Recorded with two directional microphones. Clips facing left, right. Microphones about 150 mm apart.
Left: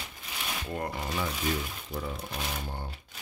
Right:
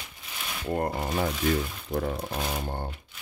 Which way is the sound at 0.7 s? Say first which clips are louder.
Right 8 dB; 40° right (ahead or behind).